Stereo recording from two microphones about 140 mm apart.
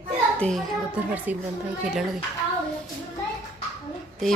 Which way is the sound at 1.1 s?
10° right (ahead or behind).